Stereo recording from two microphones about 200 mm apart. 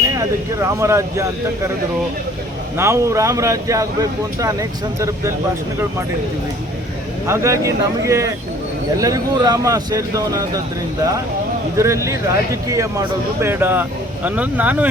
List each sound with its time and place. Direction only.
0.1 s speech: 15° right (ahead or behind)
2.7 s speech: 15° right (ahead or behind)
4.9 s speech: 15° right (ahead or behind)
7.3 s speech: 15° right (ahead or behind)
11.8 s speech: 15° right (ahead or behind)